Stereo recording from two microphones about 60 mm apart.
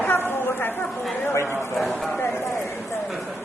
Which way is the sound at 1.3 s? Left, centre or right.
Left.